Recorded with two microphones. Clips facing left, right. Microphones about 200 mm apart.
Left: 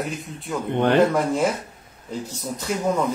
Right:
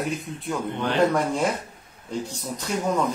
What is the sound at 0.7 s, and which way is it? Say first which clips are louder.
Speech: left 10 dB; 55° left (ahead or behind).